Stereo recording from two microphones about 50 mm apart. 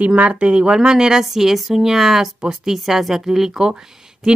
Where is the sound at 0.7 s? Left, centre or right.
Centre.